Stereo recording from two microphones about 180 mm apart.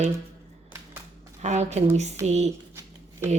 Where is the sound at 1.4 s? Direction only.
40° right (ahead or behind).